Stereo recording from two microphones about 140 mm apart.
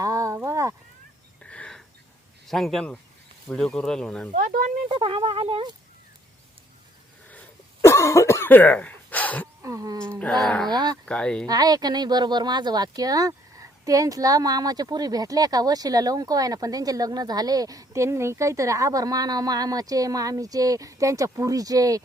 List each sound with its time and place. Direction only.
0.0 s a sound: 25° right (ahead or behind)
1.4 s a sound: 10° left (ahead or behind)
2.5 s speech: centre (ahead or behind)
4.4 s speech: 70° right (ahead or behind)
4.9 s speech: 40° right (ahead or behind)
7.3 s cough: 15° left (ahead or behind)
9.6 s speech: 25° right (ahead or behind)
10.4 s speech: 5° left (ahead or behind)
10.7 s speech: 30° right (ahead or behind)
11.0 s speech: 5° left (ahead or behind)
11.4 s speech: 25° right (ahead or behind)